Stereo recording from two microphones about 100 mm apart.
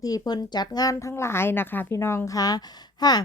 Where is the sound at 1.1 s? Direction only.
25° left (ahead or behind).